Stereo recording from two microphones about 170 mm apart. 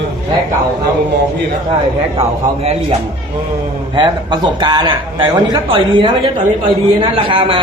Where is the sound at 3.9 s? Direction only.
25° right (ahead or behind).